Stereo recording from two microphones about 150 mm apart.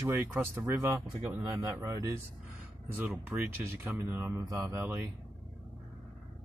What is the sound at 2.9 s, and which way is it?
Speech, 10° right (ahead or behind).